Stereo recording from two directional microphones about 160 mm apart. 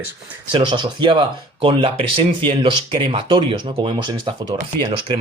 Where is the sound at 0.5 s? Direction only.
30° right (ahead or behind).